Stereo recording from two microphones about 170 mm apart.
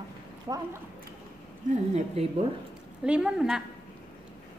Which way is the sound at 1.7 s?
40° right (ahead or behind).